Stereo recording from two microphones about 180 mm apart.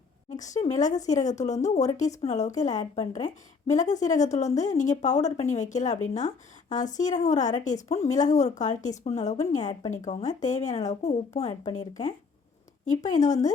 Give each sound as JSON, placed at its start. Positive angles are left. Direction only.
{"t": 0.3, "sound": "a woman's voice", "side_deg": 40}
{"t": 12.8, "sound": "speech", "side_deg": 45}